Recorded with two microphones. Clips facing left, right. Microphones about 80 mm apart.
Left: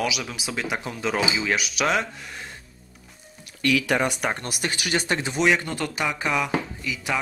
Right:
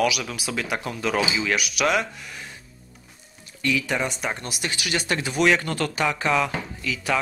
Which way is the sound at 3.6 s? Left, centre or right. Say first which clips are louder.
Left 3 dB; left.